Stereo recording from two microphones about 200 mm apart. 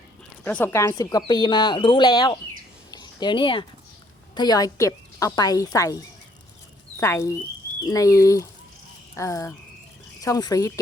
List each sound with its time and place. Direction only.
0.4 s speech: 10° left (ahead or behind)
2.9 s a sound: 20° left (ahead or behind)
4.4 s a woman's voice: 20° left (ahead or behind)
7.0 s a woman's voice: 15° left (ahead or behind)